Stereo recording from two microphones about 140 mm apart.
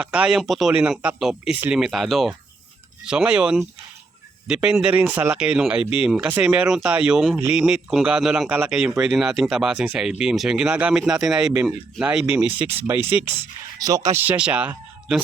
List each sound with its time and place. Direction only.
0.0 s speech: 5° right (ahead or behind)
13.7 s speech: 25° right (ahead or behind)
14.2 s speech: 10° right (ahead or behind)